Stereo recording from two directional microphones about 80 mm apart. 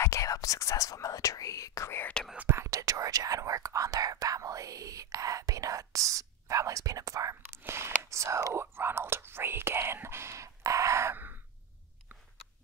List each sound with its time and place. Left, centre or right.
0.0 s speech: left
1.9 s speech: left
2.3 s speech: right
2.6 s speech: right
7.5 s speech: right
8.7 s speech: right